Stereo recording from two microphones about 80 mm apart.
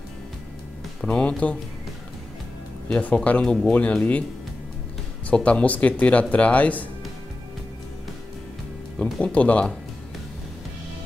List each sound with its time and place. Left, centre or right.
1.0 s speech: centre
2.9 s speech: centre
5.3 s speech: centre
8.9 s speech: centre